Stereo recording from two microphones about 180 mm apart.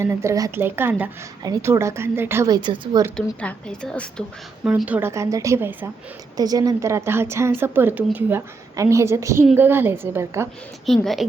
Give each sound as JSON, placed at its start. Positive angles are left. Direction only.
{"t": 0.0, "sound": "a woman's voice", "side_deg": -15}
{"t": 3.2, "sound": "a woman's voice", "side_deg": 5}
{"t": 4.6, "sound": "a woman's voice", "side_deg": -5}
{"t": 10.8, "sound": "a woman's voice", "side_deg": 0}